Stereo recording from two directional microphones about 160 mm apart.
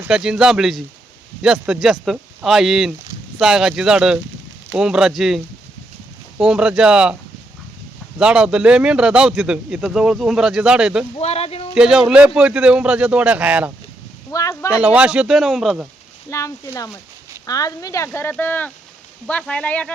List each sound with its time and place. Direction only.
0.0 s speech: 5° right (ahead or behind)
6.4 s speech: 5° right (ahead or behind)
8.2 s speech: 5° right (ahead or behind)
11.2 s speech: 40° left (ahead or behind)
11.7 s speech: 5° right (ahead or behind)
14.3 s speech: 20° left (ahead or behind)
14.7 s speech: 5° right (ahead or behind)
16.3 s speech: 20° left (ahead or behind)